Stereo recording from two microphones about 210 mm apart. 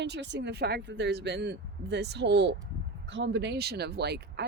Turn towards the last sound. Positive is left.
turn(degrees=-50)  # may be behind; listen again after turning